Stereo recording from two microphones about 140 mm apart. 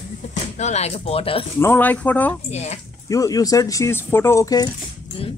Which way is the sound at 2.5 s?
50° left (ahead or behind).